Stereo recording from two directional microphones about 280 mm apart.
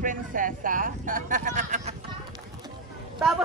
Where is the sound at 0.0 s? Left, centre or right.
Right.